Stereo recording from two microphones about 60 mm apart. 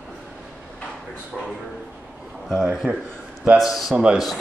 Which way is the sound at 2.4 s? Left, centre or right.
Centre.